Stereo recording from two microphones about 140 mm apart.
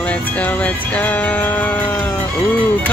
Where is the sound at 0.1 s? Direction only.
10° left (ahead or behind).